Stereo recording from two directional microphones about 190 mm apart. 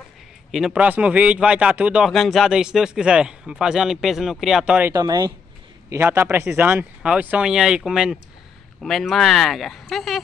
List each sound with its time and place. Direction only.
0.5 s speech: centre (ahead or behind)
4.9 s speech: 20° right (ahead or behind); by 10.2 s centre (ahead or behind)